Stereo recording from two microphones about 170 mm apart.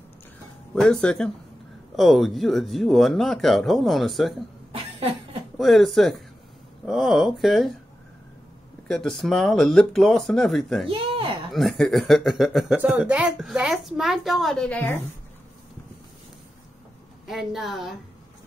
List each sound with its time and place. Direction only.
0.7 s speech: 5° left (ahead or behind)
4.7 s cough: 35° right (ahead or behind)
5.6 s speech: centre (ahead or behind)
8.8 s speech: centre (ahead or behind)
10.9 s a sound: 30° right (ahead or behind)
11.5 s speech: centre (ahead or behind)
17.3 s speech: centre (ahead or behind)